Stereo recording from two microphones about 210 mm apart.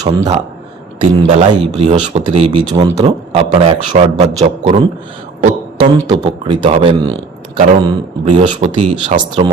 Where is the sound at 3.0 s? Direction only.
30° right (ahead or behind).